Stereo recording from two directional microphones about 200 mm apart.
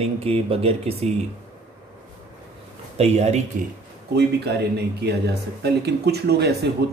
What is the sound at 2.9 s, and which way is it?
Speech, 30° right (ahead or behind).